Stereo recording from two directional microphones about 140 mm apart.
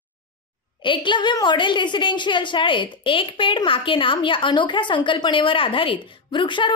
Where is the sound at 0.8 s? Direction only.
35° left (ahead or behind).